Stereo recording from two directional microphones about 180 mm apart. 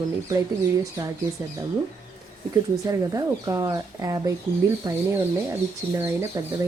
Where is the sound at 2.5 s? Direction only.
20° right (ahead or behind).